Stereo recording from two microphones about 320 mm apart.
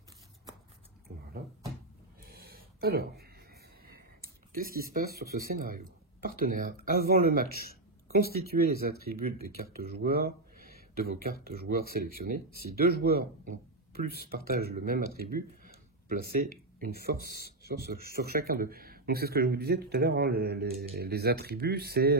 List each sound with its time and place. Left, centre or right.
2.2 s a sound: right
4.5 s a man's voice: right
10.0 s a sound: right
11.2 s a man's voice: right
17.2 s a man's voice: left
17.6 s a man's voice: right